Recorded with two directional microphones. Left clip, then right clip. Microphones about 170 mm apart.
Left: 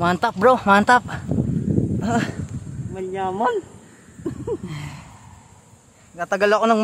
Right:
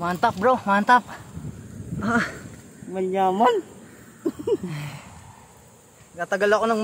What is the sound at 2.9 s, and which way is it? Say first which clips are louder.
Speech: right 4 dB; 60° right (ahead or behind).